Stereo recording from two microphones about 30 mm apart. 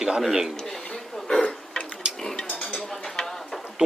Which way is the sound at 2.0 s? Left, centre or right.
Right.